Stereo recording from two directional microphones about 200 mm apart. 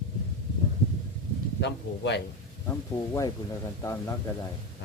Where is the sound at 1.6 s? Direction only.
60° left (ahead or behind).